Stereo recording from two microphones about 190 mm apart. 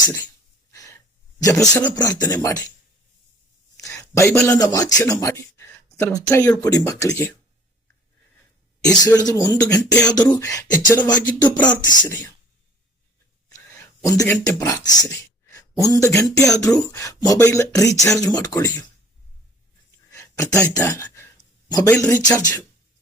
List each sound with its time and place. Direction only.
0.0 s speech: 15° left (ahead or behind)
0.7 s gasp: 15° left (ahead or behind)
1.4 s beatboxing: 20° left (ahead or behind)
3.9 s a man's voice: 10° left (ahead or behind)
6.6 s beatboxing: 20° left (ahead or behind)
7.1 s speech: 10° left (ahead or behind)
9.0 s beatboxing: 20° left (ahead or behind)
13.5 s speech: 15° left (ahead or behind)
20.1 s a sound: 15° left (ahead or behind)
22.1 s beatboxing: 20° left (ahead or behind)